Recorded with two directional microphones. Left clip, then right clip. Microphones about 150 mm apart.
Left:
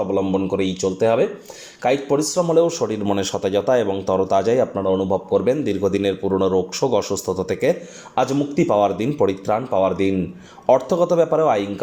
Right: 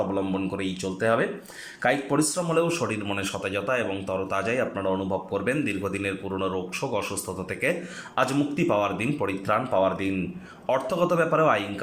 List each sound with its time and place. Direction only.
0.1 s a man's voice: 15° left (ahead or behind)